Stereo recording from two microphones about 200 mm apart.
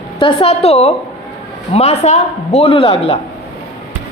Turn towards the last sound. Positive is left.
turn(degrees=30)  # may be behind; listen again after turning